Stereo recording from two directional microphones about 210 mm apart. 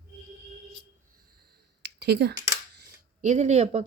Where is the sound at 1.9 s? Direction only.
55° right (ahead or behind).